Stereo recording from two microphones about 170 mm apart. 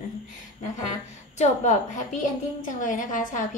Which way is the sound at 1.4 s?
45° left (ahead or behind).